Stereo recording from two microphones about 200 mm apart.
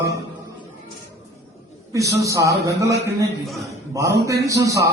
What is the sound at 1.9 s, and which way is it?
Speech, 15° right (ahead or behind).